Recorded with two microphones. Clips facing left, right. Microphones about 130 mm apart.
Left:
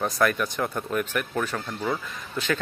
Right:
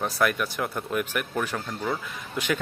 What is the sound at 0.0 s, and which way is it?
Speech, 5° right (ahead or behind).